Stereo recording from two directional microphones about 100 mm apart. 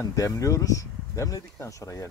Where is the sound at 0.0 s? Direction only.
35° left (ahead or behind).